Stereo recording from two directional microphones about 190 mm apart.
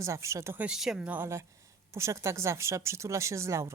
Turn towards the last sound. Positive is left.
turn(degrees=-15)  # may be behind; listen again after turning